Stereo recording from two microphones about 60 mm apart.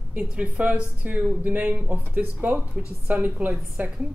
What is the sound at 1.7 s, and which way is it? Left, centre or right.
A woman's voice, right.